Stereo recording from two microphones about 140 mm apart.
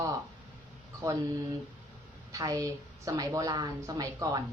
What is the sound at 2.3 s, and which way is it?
Speech, 25° right (ahead or behind).